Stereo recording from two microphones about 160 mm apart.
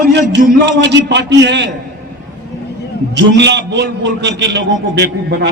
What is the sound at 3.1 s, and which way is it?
A man's voice, 90° right.